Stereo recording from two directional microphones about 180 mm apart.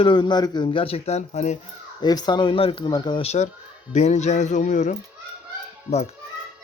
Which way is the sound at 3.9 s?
40° left (ahead or behind).